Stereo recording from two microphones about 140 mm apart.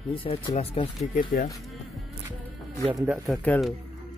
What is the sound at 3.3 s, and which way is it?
Speech, 10° left (ahead or behind).